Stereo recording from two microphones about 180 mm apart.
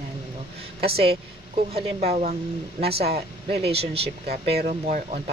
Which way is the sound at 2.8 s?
60° right (ahead or behind).